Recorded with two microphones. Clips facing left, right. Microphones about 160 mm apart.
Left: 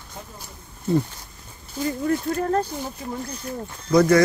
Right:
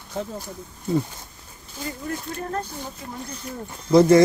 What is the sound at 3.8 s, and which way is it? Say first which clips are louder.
Speech: right 2 dB; 25° right (ahead or behind).